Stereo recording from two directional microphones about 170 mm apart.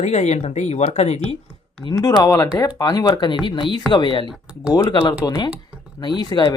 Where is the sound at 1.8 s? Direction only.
20° left (ahead or behind).